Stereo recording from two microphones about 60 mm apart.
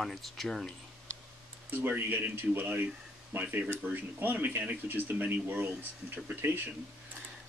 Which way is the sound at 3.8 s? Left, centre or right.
Right.